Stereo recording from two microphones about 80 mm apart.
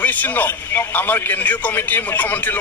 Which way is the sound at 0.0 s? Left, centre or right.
Left.